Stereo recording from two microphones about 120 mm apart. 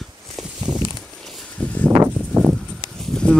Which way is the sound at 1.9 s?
15° right (ahead or behind).